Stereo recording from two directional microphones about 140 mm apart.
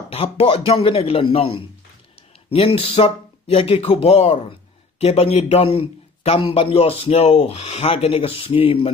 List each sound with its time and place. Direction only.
0.1 s speech: 45° left (ahead or behind)